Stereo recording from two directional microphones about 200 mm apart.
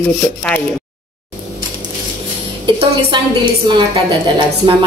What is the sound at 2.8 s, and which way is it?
A woman's voice, 25° right (ahead or behind).